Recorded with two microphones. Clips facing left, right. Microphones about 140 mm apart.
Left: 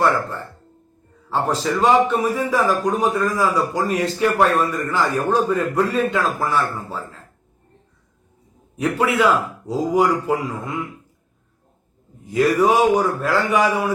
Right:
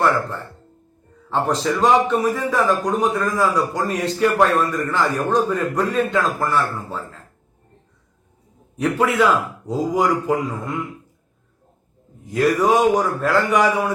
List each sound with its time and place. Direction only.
1.3 s a man's voice: 5° left (ahead or behind)
8.7 s a man's voice: 10° left (ahead or behind)
12.3 s a man's voice: centre (ahead or behind)